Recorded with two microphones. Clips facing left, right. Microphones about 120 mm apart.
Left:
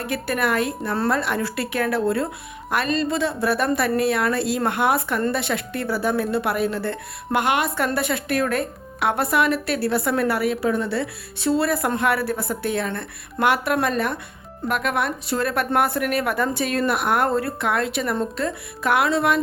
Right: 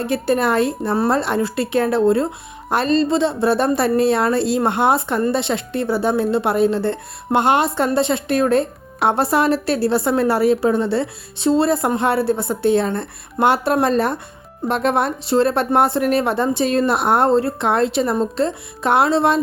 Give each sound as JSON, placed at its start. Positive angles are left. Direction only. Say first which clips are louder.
{"t": 0.0, "sound": "a woman's voice", "louder": "right 6 dB", "side_deg": -30}